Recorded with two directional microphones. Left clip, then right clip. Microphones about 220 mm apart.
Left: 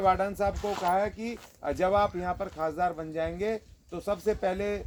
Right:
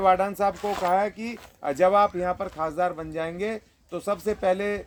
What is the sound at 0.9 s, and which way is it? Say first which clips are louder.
Speech: right 3 dB; 50° right (ahead or behind).